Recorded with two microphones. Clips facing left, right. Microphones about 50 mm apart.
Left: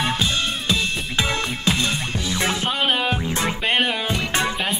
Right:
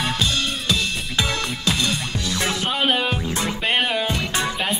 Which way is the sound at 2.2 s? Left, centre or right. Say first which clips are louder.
Left 2 dB; left.